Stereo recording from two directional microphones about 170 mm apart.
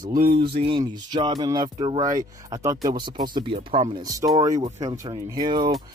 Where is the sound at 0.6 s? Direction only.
30° right (ahead or behind).